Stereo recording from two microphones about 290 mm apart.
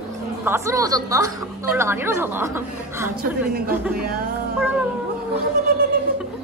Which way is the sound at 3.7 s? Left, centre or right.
Centre.